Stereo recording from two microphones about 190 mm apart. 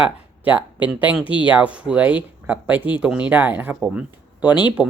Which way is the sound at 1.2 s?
25° left (ahead or behind).